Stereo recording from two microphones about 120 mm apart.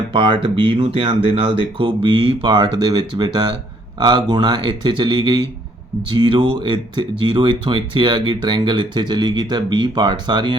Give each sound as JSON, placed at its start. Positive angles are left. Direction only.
{"t": 0.1, "sound": "speech", "side_deg": -45}